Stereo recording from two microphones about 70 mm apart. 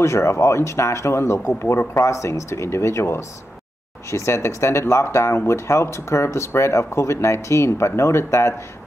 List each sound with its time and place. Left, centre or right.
0.0 s speech: left